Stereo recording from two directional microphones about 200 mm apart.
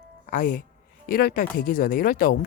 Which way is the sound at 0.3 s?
40° left (ahead or behind).